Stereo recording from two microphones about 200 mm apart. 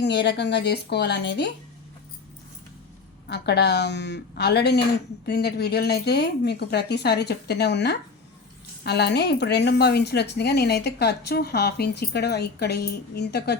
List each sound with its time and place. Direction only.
0.0 s a woman's voice: 60° left (ahead or behind)
3.2 s a woman's voice: 55° left (ahead or behind)